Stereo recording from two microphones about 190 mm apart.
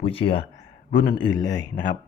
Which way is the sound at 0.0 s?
30° left (ahead or behind).